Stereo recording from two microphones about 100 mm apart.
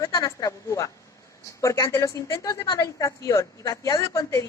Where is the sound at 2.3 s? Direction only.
40° left (ahead or behind).